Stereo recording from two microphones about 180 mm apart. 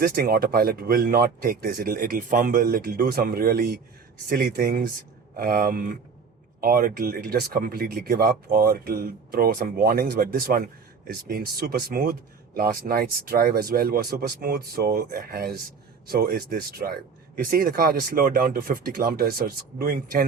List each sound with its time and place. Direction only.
0.0 s speech: 55° right (ahead or behind)